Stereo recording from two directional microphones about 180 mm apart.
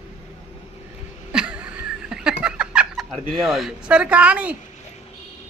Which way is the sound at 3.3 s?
Centre (ahead or behind).